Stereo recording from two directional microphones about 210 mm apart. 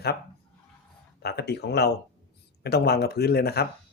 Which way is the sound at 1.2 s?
50° left (ahead or behind).